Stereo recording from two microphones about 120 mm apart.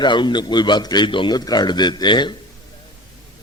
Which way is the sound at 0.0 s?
40° left (ahead or behind).